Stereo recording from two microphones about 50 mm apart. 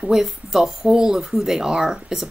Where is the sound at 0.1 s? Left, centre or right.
Centre.